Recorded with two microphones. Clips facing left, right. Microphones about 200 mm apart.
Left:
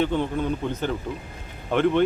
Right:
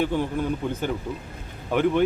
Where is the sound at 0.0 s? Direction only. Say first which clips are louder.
Left 1 dB; 10° right (ahead or behind).